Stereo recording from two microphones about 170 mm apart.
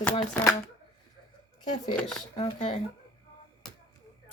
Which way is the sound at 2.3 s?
40° left (ahead or behind).